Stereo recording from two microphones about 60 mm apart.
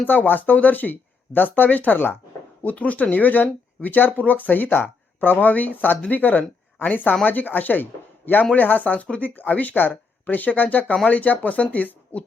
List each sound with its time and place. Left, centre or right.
0.0 s speech: left